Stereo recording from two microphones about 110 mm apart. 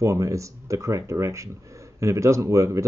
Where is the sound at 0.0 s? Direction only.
30° right (ahead or behind).